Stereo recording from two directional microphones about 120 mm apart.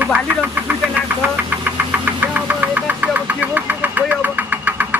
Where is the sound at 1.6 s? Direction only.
10° right (ahead or behind).